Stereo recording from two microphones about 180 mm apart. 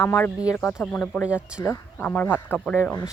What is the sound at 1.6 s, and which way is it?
Speech, 10° left (ahead or behind).